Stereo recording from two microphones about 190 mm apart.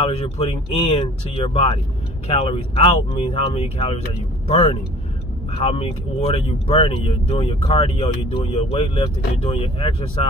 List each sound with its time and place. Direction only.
0.0 s speech: 30° left (ahead or behind)